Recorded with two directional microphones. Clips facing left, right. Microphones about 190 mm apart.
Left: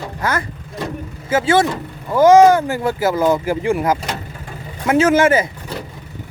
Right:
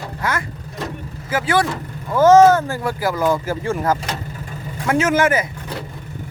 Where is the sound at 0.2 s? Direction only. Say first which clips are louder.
Left 2 dB; 40° left (ahead or behind).